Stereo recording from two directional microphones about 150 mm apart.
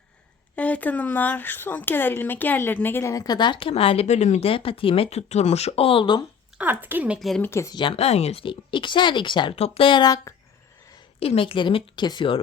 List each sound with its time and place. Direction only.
0.5 s speech: 10° left (ahead or behind); by 6.2 s 35° left (ahead or behind)
6.6 s speech: 15° right (ahead or behind)
7.2 s speech: centre (ahead or behind)
7.4 s speech: 20° left (ahead or behind)
7.8 s speech: 40° left (ahead or behind)
11.2 s speech: 40° left (ahead or behind)